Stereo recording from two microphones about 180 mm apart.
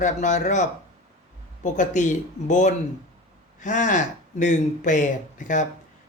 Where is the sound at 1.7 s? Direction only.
45° left (ahead or behind).